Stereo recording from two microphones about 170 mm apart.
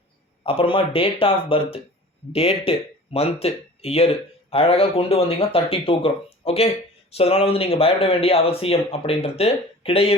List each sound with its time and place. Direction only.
0.4 s speech: 30° left (ahead or behind)